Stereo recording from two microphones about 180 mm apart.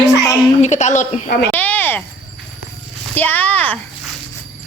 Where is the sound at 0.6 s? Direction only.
40° left (ahead or behind).